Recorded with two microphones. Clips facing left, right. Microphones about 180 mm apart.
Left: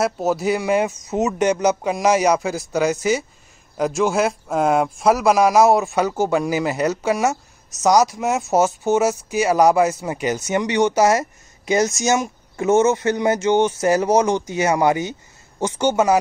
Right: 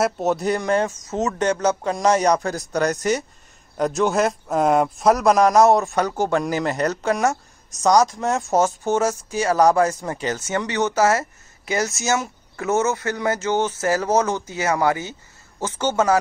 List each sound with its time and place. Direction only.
0.0 s speech: centre (ahead or behind)